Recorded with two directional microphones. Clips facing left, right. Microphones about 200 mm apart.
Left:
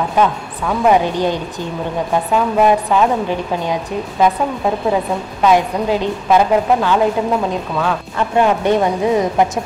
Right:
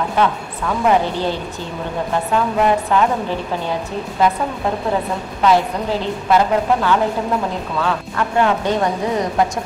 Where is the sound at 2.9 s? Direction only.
15° left (ahead or behind).